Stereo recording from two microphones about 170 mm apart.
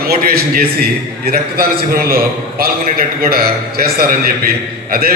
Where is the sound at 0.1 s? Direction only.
60° right (ahead or behind).